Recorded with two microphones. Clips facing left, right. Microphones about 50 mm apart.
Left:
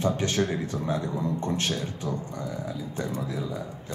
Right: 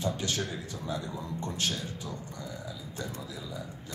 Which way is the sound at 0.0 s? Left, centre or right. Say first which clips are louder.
Left 7 dB; left.